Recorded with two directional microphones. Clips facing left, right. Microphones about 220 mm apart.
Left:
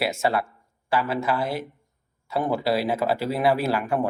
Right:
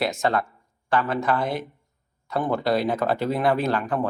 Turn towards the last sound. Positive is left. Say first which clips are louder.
# even
turn(degrees=10)  # may be behind; listen again after turning